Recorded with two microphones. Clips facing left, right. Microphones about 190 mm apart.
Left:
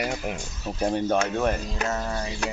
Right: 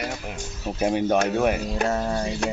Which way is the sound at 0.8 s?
10° right (ahead or behind).